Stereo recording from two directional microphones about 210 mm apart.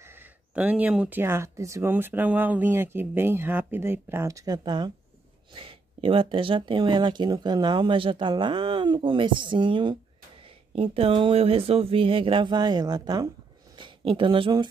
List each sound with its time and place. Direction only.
0.0 s speech: 10° right (ahead or behind)